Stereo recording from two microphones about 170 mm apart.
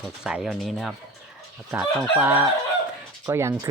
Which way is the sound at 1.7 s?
10° right (ahead or behind).